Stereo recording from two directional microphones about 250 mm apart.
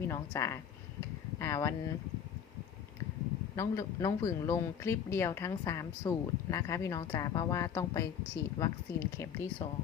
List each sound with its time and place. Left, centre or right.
0.1 s speech: centre
3.5 s speech: centre